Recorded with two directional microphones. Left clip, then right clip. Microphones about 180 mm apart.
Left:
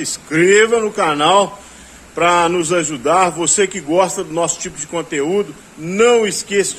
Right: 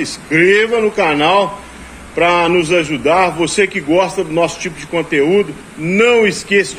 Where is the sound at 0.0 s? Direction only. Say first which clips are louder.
Right 3 dB; 25° left (ahead or behind).